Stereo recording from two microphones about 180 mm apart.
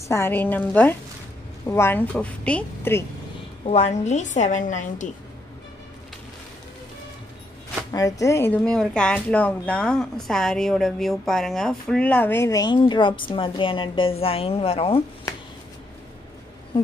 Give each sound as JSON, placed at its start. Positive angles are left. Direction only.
{"t": 0.1, "sound": "speech", "side_deg": 10}
{"t": 3.6, "sound": "a woman's voice", "side_deg": 35}
{"t": 7.9, "sound": "speech", "side_deg": 20}
{"t": 16.7, "sound": "speech", "side_deg": 30}